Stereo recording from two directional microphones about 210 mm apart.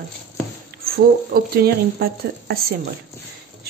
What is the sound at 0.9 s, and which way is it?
Speech, 45° right (ahead or behind).